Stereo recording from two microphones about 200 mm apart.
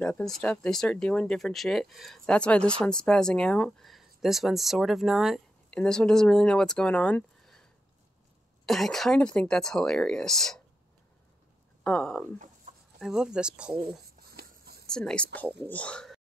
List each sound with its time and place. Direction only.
0.0 s speech: 5° left (ahead or behind)
8.6 s speech: centre (ahead or behind)
11.8 s speech: 5° left (ahead or behind)
12.7 s chicken: 40° right (ahead or behind)
13.0 s speech: 5° right (ahead or behind)
14.0 s a sound: 50° right (ahead or behind)
14.9 s speech: 5° left (ahead or behind)